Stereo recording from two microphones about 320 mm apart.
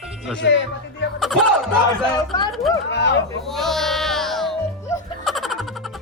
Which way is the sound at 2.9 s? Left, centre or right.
Left.